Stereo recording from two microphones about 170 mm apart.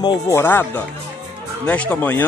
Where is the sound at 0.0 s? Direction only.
25° left (ahead or behind).